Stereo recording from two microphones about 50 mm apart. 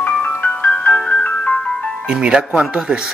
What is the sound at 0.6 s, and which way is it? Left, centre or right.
Music, left.